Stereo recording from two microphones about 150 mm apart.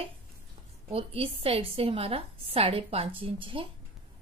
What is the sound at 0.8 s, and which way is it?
A woman's voice, 40° right (ahead or behind).